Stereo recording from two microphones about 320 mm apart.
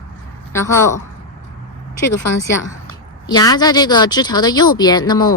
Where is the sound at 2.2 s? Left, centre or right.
Left.